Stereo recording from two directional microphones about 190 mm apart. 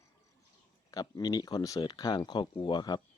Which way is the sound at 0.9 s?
20° left (ahead or behind).